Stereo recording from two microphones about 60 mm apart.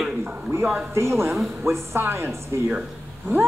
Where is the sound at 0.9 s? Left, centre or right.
Right.